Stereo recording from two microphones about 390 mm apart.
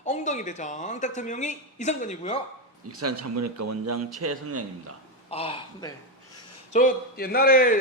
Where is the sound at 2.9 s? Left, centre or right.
Right.